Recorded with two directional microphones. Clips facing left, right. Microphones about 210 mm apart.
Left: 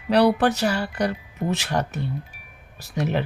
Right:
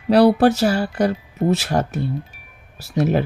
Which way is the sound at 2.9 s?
40° right (ahead or behind).